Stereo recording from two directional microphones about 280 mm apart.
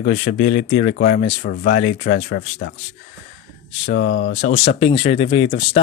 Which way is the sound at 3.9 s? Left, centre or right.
Left.